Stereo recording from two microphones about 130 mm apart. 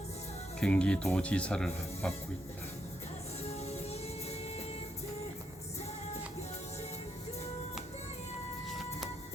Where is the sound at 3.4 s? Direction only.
55° left (ahead or behind).